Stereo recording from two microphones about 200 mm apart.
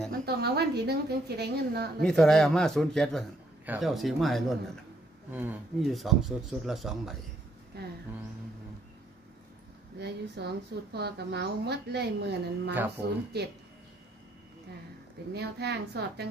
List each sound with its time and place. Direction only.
0.2 s a woman's voice: 55° right (ahead or behind)
2.0 s speech: centre (ahead or behind)
7.7 s speech: 55° right (ahead or behind)
9.9 s a woman's voice: 55° right (ahead or behind)
12.7 s speech: 10° right (ahead or behind)
15.3 s a woman's voice: 55° right (ahead or behind)